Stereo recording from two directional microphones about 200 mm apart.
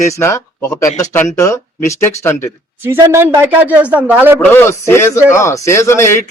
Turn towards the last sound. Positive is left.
turn(degrees=15)  # may be behind; listen again after turning